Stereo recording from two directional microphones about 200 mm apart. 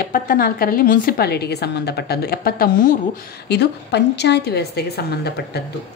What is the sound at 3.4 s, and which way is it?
A woman's voice, 55° left (ahead or behind).